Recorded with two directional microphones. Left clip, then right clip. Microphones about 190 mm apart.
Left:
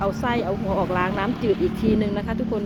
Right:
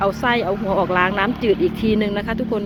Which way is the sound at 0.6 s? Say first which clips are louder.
Right 5 dB; 30° right (ahead or behind).